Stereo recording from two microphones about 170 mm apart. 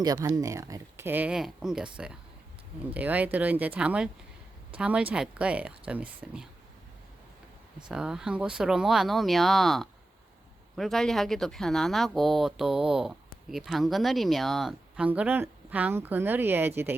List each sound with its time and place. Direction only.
0.0 s speech: 20° right (ahead or behind)
7.9 s speech: 5° right (ahead or behind)